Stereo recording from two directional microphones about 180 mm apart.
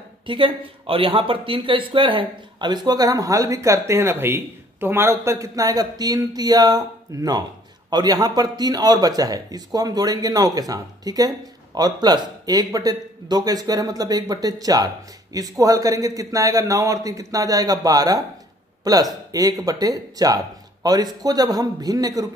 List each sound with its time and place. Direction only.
0.3 s speech: 30° right (ahead or behind)